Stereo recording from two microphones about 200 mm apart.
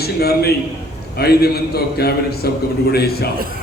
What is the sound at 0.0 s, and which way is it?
A man's voice, 50° left (ahead or behind).